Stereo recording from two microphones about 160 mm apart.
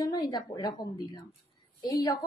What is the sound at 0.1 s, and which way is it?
A woman's voice, 25° left (ahead or behind).